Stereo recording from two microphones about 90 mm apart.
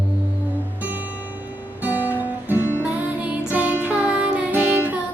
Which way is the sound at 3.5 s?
15° right (ahead or behind).